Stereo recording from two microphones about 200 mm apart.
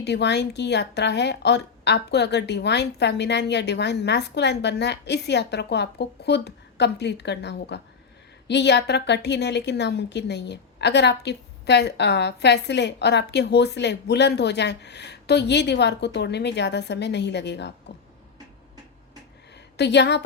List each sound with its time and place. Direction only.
0.0 s a woman's voice: 55° left (ahead or behind)
19.7 s a woman's voice: 60° left (ahead or behind)